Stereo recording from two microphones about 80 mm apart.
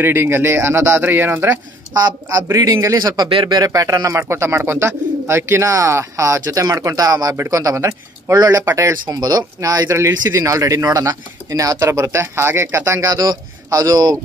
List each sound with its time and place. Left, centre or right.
0.0 s speech: right
2.0 s speech: right
7.3 s speech: right
9.0 s speech: right
9.6 s speech: right